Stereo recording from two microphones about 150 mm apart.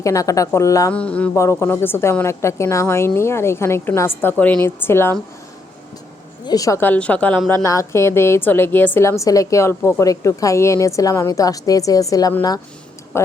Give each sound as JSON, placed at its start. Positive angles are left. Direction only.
{"t": 0.0, "sound": "a woman's voice", "side_deg": 20}
{"t": 0.9, "sound": "a woman's voice", "side_deg": 10}
{"t": 1.4, "sound": "a woman's voice", "side_deg": 20}
{"t": 6.4, "sound": "a woman's voice", "side_deg": 25}
{"t": 7.6, "sound": "a woman's voice", "side_deg": 20}
{"t": 13.1, "sound": "a sound", "side_deg": 15}